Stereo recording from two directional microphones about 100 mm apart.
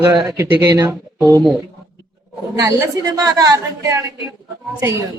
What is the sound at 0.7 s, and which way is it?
Speech, 35° right (ahead or behind).